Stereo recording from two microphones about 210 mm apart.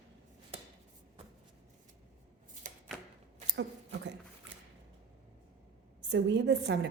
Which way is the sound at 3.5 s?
60° right (ahead or behind).